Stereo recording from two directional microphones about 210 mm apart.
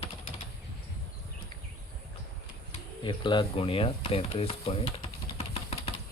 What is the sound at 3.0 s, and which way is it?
Stir, 20° left (ahead or behind).